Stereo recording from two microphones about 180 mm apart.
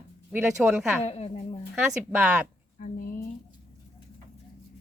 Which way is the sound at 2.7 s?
45° left (ahead or behind).